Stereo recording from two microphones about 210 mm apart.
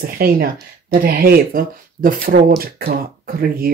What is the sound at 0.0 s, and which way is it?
Speech, 45° right (ahead or behind).